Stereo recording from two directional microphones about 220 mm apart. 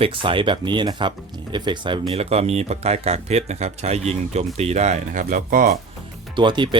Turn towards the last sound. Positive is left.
turn(degrees=-20)  # may be behind; listen again after turning